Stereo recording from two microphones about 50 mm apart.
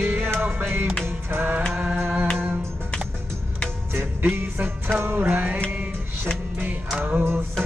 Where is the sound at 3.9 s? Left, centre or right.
Right.